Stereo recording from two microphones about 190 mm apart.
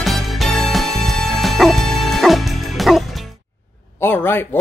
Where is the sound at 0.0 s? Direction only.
Centre (ahead or behind).